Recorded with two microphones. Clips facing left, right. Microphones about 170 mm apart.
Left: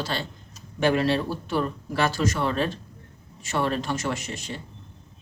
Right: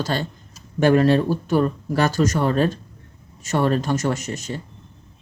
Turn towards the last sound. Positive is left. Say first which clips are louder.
# right 5 dB
turn(degrees=-45)  # may be behind; listen again after turning